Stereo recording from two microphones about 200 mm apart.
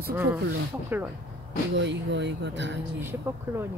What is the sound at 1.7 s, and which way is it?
Speech, 60° right (ahead or behind).